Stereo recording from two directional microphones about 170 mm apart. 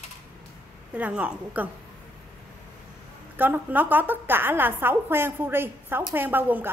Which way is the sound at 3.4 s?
10° right (ahead or behind).